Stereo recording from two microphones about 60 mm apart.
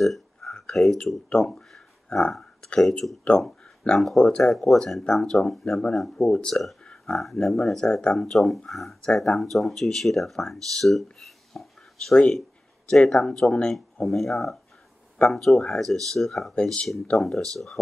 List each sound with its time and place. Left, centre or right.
0.0 s a sound: centre
1.4 s speech: centre
2.0 s speech: centre
5.2 s speech: centre
8.6 s speech: centre
9.0 s speech: centre
9.4 s speech: centre
11.1 s dishes: centre
12.1 s a sound: centre
13.0 s speech: centre
14.0 s speech: centre
15.1 s speech: centre
15.4 s speech: centre